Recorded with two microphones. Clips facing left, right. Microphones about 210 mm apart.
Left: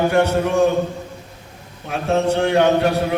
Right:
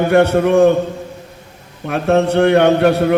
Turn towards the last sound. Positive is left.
turn(degrees=-60)  # may be behind; listen again after turning